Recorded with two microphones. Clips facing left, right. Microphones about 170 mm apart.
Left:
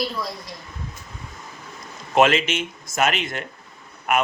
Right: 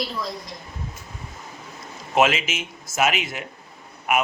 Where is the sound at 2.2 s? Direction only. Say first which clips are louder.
Left 3 dB; 5° right (ahead or behind).